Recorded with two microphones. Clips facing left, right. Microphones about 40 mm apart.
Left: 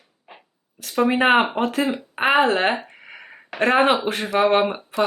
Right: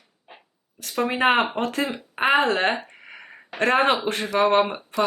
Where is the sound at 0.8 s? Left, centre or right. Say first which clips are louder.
Left 3 dB; centre.